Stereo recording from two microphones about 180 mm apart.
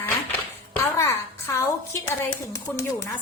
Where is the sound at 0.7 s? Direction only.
15° left (ahead or behind).